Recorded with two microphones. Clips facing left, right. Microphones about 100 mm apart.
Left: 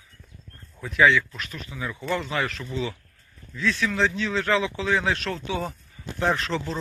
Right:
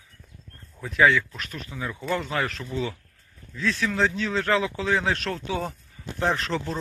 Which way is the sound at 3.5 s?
35° right (ahead or behind).